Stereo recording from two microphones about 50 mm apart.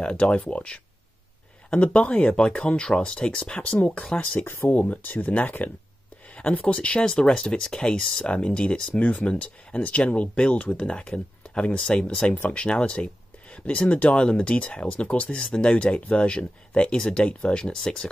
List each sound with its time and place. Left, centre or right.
0.0 s speech: left
3.7 s speech: left
4.4 s speech: left
4.7 s speech: left; by 18.1 s centre